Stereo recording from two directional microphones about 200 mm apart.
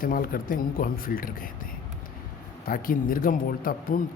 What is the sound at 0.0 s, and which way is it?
Speech, 45° left (ahead or behind).